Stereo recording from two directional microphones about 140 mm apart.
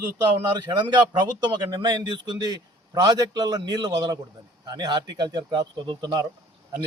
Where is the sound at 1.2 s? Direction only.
35° right (ahead or behind).